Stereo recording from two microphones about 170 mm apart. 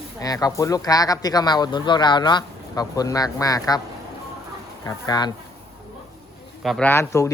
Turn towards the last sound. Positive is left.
turn(degrees=15)  # may be behind; listen again after turning